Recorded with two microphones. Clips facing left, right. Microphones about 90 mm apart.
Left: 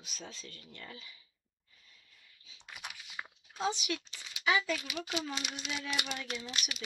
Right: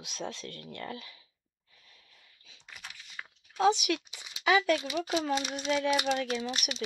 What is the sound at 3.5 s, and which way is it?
Speech, 65° right (ahead or behind).